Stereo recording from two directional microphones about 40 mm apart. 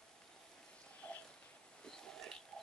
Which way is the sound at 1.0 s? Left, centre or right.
Left.